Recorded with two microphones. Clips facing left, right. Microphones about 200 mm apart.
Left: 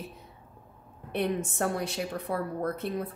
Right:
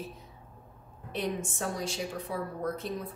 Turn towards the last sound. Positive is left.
turn(degrees=60)  # may be behind; listen again after turning